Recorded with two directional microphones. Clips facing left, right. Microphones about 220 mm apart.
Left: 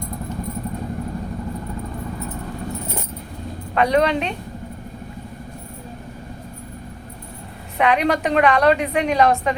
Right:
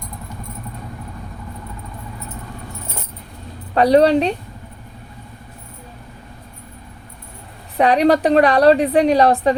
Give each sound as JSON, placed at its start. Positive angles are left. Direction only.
{"t": 3.8, "sound": "a woman's voice", "side_deg": -35}
{"t": 7.8, "sound": "a woman's voice", "side_deg": -35}